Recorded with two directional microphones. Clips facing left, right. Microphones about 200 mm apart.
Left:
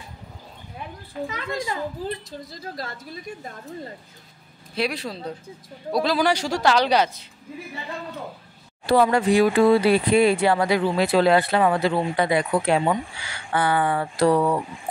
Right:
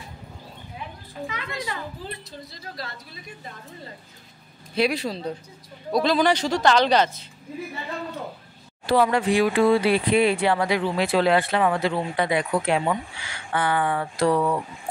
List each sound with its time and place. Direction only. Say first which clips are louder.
1.2 s a woman's voice: left 3 dB; 45° left (ahead or behind)
4.7 s speech: right 3 dB; centre (ahead or behind)
8.9 s speech: left 2 dB; 45° left (ahead or behind)